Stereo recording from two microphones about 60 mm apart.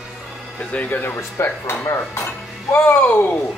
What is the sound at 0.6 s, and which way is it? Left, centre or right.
Speech, left.